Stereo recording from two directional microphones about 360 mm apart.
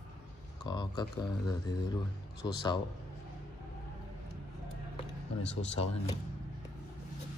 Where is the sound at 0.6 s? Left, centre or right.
Centre.